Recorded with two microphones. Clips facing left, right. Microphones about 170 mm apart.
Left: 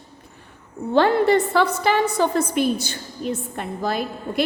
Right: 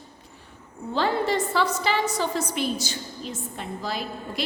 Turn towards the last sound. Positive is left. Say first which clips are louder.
# left 6 dB
turn(degrees=55)  # may be behind; listen again after turning